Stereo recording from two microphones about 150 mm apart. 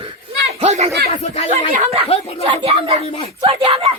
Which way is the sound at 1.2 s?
45° left (ahead or behind).